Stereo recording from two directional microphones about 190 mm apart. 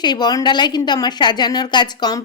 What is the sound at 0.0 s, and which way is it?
A woman's voice, 20° left (ahead or behind).